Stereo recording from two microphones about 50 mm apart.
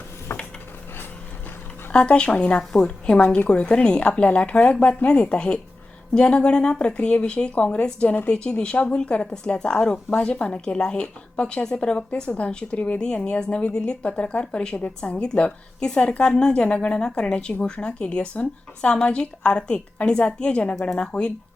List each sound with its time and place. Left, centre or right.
0.3 s mechanisms: left
1.9 s a woman's voice: left
3.2 s a woman's voice: left
3.5 s a woman's voice: left
8.3 s a woman's voice: centre